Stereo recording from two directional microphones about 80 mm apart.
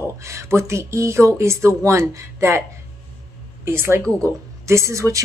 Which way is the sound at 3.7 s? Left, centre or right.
Right.